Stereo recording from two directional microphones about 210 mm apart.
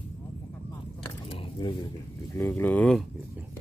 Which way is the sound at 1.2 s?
20° left (ahead or behind).